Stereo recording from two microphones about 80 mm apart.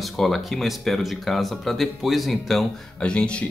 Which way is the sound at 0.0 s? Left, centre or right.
Centre.